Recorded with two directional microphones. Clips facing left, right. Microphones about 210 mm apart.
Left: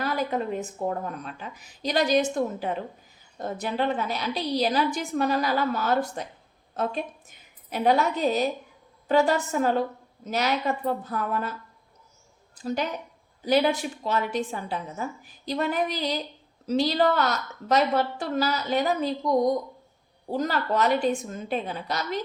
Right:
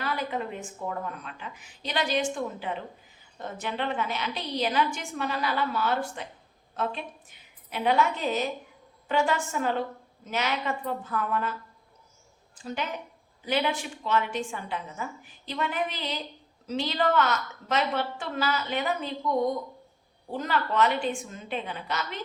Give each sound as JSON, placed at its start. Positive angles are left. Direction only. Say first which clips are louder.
{"t": 0.0, "sound": "a woman's voice", "louder": "left 4 dB", "side_deg": 40}
{"t": 12.5, "sound": "a woman's voice", "louder": "left 5 dB", "side_deg": 40}